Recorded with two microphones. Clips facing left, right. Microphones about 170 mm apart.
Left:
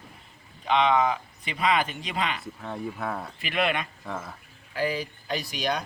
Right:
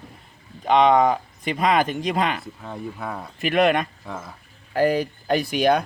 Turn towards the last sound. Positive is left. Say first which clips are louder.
# right 10 dB
turn(degrees=-55)  # may be behind; listen again after turning